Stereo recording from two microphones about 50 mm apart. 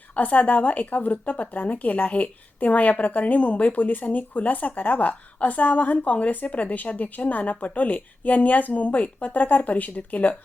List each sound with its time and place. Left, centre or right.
0.2 s a woman's voice: left